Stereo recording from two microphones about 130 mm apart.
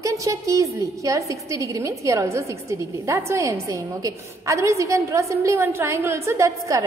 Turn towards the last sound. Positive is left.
turn(degrees=-25)  # may be behind; listen again after turning